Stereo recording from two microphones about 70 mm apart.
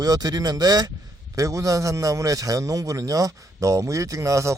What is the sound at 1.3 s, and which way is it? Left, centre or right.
A man's voice, right.